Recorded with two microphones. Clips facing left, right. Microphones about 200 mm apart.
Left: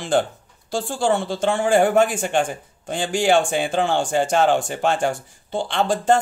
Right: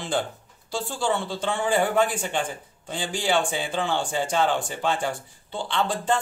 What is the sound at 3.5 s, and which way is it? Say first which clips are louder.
Speech: left 7 dB; 65° left (ahead or behind).